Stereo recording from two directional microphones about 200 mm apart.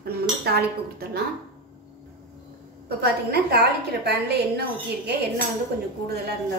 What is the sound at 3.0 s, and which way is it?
A woman's voice, 55° right (ahead or behind).